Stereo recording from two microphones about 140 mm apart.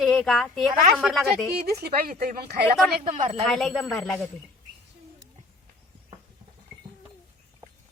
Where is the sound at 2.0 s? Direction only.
90° right.